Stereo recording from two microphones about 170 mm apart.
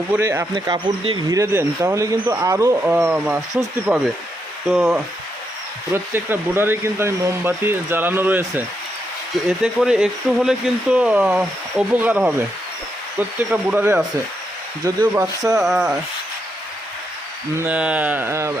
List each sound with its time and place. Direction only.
0.1 s speech: 15° right (ahead or behind)
5.9 s speech: 15° right (ahead or behind)
15.5 s rub: centre (ahead or behind)
17.6 s speech: 10° right (ahead or behind)